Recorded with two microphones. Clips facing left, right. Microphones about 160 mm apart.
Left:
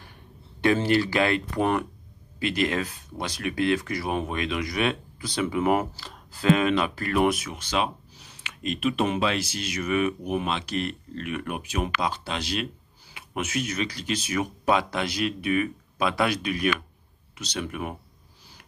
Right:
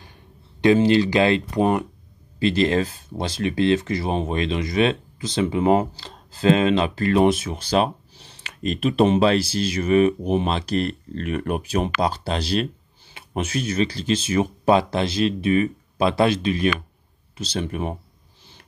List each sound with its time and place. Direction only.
0.6 s speech: 20° right (ahead or behind)